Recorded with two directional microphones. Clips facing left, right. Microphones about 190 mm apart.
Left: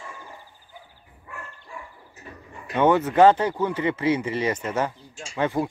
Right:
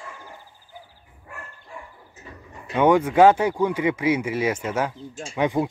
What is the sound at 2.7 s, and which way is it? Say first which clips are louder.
Speech: right 2 dB; 10° right (ahead or behind).